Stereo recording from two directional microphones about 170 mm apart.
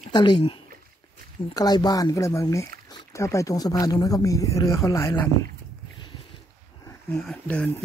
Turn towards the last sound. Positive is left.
turn(degrees=5)  # may be behind; listen again after turning